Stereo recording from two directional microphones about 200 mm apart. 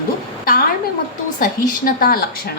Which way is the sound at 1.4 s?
45° left (ahead or behind).